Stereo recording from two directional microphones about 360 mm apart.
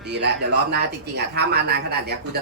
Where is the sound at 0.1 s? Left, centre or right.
Right.